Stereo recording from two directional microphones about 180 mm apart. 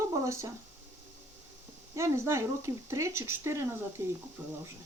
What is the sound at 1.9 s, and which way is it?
Speech, 15° right (ahead or behind).